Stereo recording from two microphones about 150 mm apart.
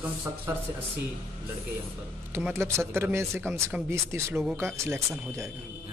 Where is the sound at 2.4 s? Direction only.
15° right (ahead or behind).